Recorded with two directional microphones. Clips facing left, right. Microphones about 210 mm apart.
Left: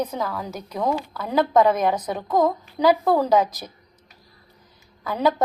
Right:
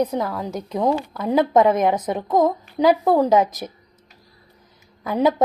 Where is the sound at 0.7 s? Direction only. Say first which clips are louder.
Right 3 dB; 20° right (ahead or behind).